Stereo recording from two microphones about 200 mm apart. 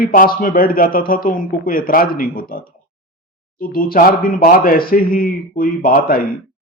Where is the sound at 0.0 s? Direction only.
45° left (ahead or behind).